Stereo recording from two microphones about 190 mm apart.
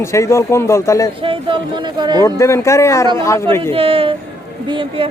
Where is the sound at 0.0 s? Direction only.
15° left (ahead or behind).